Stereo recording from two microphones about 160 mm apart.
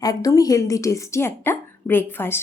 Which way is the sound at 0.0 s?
20° left (ahead or behind).